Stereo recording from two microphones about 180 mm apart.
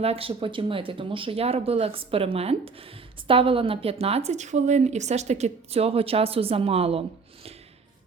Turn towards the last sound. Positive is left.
turn(degrees=-35)  # may be behind; listen again after turning